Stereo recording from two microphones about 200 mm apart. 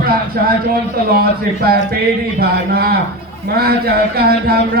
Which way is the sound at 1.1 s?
50° right (ahead or behind).